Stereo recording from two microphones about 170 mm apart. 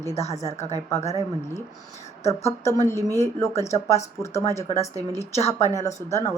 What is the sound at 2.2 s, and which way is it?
Speech, 15° left (ahead or behind).